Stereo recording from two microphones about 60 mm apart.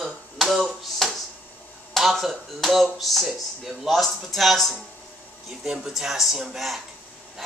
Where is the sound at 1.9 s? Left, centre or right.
Centre.